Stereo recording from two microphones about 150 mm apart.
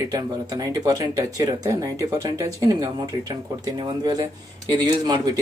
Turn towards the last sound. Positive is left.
turn(degrees=-25)  # may be behind; listen again after turning